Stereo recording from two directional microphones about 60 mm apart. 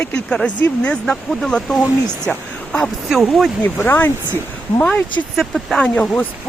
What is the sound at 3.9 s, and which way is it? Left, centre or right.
Speech, left.